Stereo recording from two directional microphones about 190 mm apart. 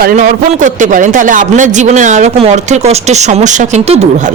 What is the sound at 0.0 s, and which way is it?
A woman's voice, 45° right (ahead or behind).